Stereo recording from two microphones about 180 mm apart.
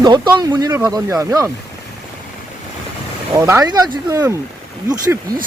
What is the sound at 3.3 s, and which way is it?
Speech, 15° right (ahead or behind).